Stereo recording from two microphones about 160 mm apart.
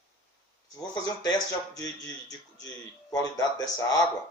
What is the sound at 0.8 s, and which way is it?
Speech, 25° left (ahead or behind).